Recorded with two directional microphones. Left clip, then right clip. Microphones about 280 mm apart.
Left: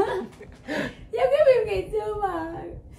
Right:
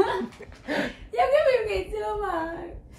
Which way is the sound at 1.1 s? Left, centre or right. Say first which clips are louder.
Left 2 dB; centre.